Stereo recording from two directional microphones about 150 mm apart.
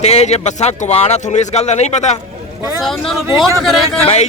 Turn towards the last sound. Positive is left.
turn(degrees=45)  # may be behind; listen again after turning